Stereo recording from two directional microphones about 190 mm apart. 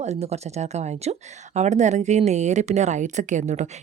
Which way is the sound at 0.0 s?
35° right (ahead or behind).